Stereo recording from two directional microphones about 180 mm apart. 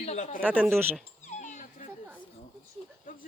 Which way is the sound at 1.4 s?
45° left (ahead or behind).